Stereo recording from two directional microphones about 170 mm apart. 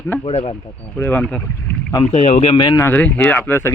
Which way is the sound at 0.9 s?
10° left (ahead or behind).